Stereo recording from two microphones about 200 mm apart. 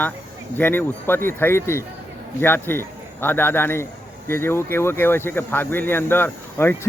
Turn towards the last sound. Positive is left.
turn(degrees=10)  # may be behind; listen again after turning